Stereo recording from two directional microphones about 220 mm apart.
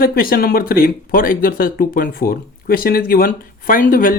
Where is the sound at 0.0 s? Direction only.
45° left (ahead or behind).